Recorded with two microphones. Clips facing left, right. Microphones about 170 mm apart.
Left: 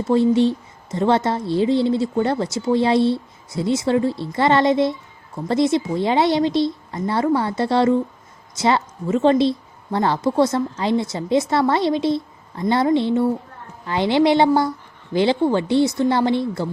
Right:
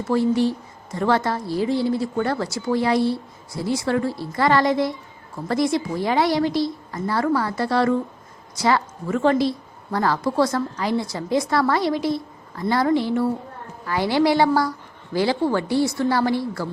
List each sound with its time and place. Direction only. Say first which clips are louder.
0.1 s a woman's voice: left 3 dB; 25° left (ahead or behind)